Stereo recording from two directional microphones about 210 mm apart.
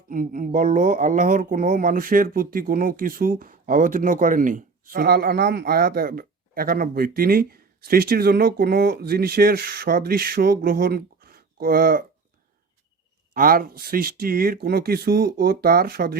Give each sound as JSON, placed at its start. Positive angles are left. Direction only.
{"t": 0.1, "sound": "speech", "side_deg": -40}
{"t": 13.3, "sound": "speech", "side_deg": -40}